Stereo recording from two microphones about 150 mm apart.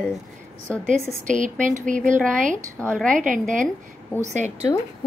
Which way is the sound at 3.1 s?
60° right (ahead or behind).